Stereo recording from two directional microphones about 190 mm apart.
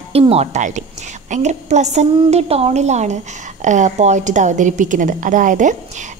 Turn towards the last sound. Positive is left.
turn(degrees=-40)  # may be behind; listen again after turning